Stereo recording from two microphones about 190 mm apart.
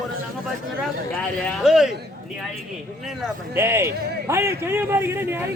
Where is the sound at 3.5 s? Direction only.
15° right (ahead or behind).